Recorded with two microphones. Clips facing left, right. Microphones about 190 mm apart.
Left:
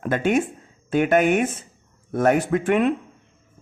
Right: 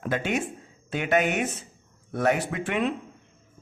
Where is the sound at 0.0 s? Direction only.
50° left (ahead or behind).